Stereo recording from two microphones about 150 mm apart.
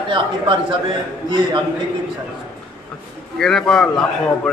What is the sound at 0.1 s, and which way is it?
Speech, 35° right (ahead or behind).